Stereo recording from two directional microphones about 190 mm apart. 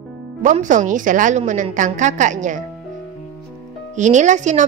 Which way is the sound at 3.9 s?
40° right (ahead or behind).